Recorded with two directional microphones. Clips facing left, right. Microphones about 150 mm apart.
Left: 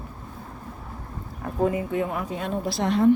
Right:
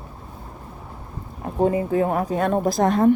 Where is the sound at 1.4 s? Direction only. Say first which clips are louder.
Right 4 dB; 30° right (ahead or behind); by 3.1 s 45° right (ahead or behind).